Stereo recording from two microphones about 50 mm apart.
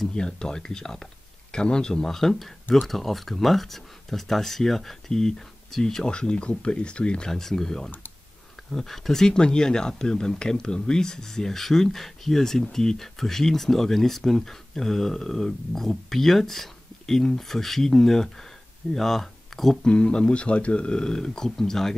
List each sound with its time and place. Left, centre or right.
0.1 s speech: centre
7.2 s speech: centre
19.9 s speech: centre